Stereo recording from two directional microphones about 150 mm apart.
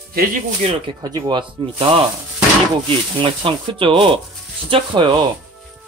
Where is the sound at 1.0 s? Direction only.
30° right (ahead or behind).